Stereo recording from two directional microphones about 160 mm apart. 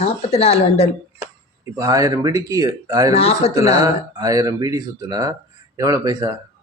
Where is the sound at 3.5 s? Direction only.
20° right (ahead or behind).